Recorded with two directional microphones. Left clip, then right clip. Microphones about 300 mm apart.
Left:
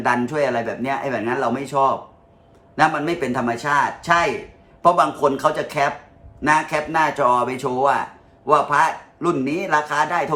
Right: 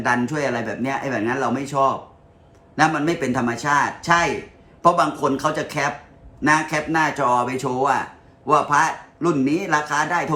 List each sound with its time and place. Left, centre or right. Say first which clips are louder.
0.0 s a man's voice: left 2 dB; centre